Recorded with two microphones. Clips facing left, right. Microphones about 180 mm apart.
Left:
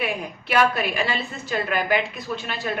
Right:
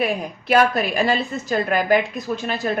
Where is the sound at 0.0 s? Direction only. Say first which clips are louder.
Right 5 dB; 40° right (ahead or behind).